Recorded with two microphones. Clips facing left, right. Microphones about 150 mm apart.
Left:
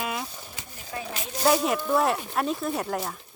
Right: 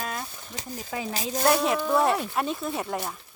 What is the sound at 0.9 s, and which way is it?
Speech, 90° right.